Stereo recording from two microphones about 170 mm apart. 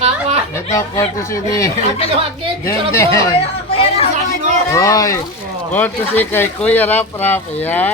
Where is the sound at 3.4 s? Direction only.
35° left (ahead or behind).